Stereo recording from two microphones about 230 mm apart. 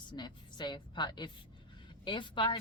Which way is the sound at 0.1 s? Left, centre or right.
Centre.